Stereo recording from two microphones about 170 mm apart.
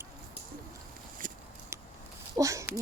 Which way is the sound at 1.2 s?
50° right (ahead or behind).